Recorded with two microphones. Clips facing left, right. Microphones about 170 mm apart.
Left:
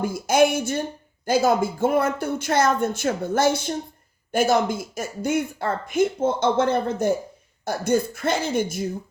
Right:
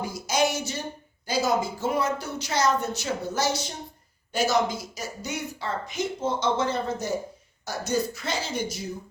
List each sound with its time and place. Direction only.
0.0 s speech: 55° left (ahead or behind)